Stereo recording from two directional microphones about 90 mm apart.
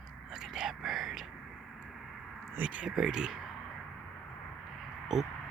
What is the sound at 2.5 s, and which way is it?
Speech, 15° right (ahead or behind).